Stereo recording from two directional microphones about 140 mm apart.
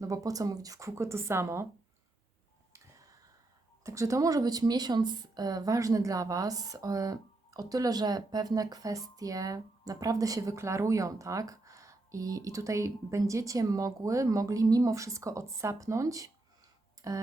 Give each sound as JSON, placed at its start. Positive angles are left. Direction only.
{"t": 0.0, "sound": "a woman's voice", "side_deg": -25}
{"t": 2.7, "sound": "a sound", "side_deg": -25}
{"t": 3.8, "sound": "a woman's voice", "side_deg": -20}